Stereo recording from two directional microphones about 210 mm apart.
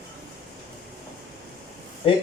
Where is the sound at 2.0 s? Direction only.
25° left (ahead or behind).